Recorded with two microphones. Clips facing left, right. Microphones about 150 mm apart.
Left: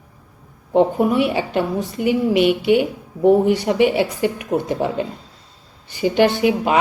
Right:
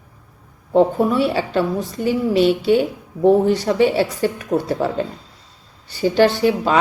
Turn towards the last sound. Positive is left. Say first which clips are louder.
# right 1 dB
turn(degrees=15)  # may be behind; listen again after turning